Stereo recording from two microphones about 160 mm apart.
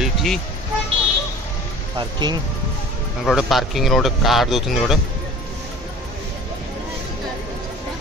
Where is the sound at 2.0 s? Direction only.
25° right (ahead or behind).